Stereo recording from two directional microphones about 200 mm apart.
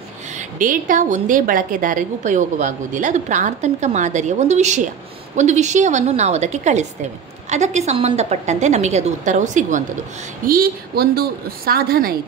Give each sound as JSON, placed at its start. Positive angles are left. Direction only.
{"t": 0.4, "sound": "a woman's voice", "side_deg": -40}